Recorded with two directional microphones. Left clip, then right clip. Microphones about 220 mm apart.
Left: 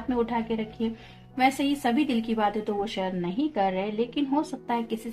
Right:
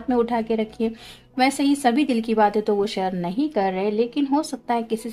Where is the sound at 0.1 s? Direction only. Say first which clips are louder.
Right 6 dB; 45° right (ahead or behind).